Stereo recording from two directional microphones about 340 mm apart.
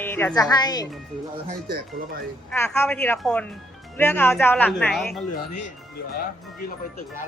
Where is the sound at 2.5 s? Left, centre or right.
Centre.